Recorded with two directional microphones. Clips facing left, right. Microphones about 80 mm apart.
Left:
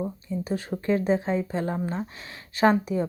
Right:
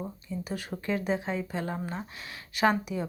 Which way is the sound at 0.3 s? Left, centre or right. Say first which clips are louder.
Left 5 dB; left.